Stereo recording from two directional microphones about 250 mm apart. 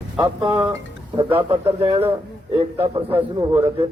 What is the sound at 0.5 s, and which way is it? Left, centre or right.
A man's voice, centre.